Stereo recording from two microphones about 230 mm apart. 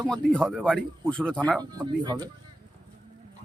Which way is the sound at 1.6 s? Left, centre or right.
Centre.